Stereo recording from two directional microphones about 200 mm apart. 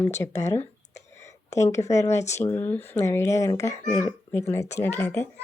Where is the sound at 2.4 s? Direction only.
10° left (ahead or behind).